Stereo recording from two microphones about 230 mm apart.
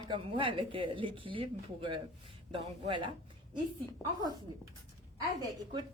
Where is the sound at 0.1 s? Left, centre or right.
Right.